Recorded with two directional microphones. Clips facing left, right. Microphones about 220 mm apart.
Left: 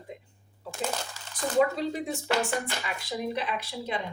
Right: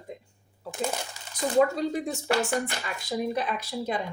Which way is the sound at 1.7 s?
45° right (ahead or behind).